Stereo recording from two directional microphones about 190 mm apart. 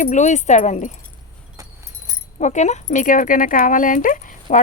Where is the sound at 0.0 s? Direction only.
40° left (ahead or behind).